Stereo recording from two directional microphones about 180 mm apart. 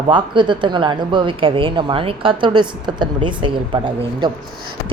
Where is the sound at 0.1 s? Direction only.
25° right (ahead or behind).